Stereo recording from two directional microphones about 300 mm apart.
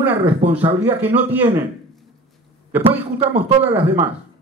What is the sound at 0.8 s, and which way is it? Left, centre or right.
Speech, centre.